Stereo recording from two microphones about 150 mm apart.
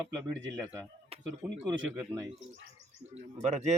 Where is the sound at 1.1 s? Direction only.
40° right (ahead or behind).